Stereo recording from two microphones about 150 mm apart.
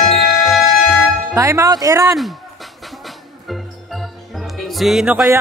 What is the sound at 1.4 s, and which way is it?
Speech, 20° right (ahead or behind).